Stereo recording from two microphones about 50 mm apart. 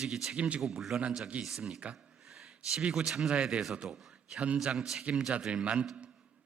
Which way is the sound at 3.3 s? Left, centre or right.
Right.